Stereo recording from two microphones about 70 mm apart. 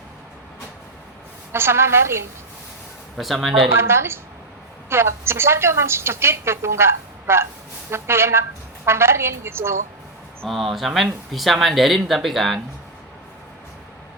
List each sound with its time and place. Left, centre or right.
1.5 s a woman's voice: right
3.2 s speech: centre
3.7 s a woman's voice: right
10.5 s speech: centre